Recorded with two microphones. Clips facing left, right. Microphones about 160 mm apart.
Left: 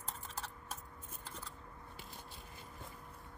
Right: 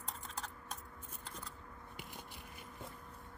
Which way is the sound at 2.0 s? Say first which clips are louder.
Right 1 dB; 15° right (ahead or behind).